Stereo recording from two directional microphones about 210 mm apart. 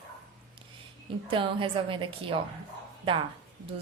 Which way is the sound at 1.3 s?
25° right (ahead or behind).